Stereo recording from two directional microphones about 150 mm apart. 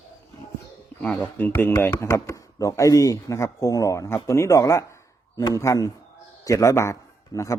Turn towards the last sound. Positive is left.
turn(degrees=20)  # may be behind; listen again after turning